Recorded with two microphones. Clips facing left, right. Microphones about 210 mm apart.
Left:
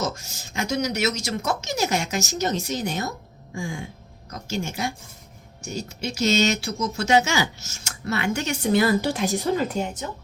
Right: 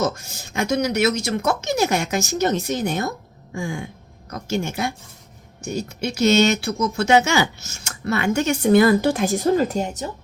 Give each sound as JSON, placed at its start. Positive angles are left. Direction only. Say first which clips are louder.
{"t": 0.0, "sound": "speech", "louder": "right 5 dB", "side_deg": -60}